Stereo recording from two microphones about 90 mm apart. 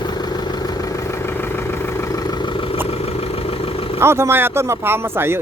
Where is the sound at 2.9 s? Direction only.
90° left.